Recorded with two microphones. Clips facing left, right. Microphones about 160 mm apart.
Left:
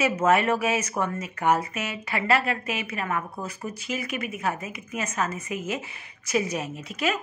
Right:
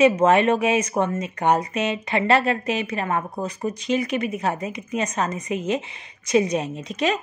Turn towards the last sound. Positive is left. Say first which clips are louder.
# right 4 dB
turn(degrees=-25)  # may be behind; listen again after turning